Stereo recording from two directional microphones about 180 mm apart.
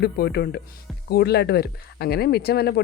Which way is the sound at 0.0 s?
65° left (ahead or behind).